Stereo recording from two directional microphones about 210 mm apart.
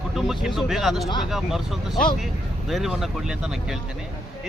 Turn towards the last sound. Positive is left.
turn(degrees=0)  # may be behind; listen again after turning